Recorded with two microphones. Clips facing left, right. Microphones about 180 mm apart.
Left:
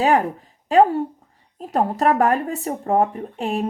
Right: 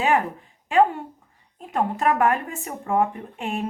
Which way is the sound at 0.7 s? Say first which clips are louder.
Left 4 dB; 40° left (ahead or behind).